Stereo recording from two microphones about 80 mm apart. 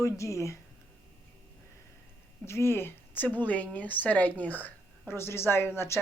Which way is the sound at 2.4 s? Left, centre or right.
Left.